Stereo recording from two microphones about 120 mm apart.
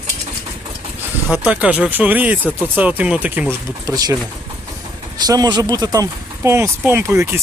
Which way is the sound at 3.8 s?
30° right (ahead or behind).